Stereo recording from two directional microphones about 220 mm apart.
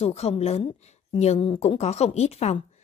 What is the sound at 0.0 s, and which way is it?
A woman's voice, 30° left (ahead or behind).